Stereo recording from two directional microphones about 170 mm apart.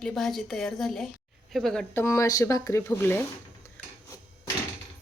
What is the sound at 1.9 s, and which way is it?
Speech, 15° left (ahead or behind).